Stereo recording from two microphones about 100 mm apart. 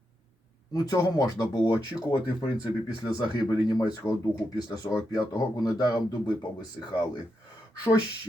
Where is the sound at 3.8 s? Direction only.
40° left (ahead or behind).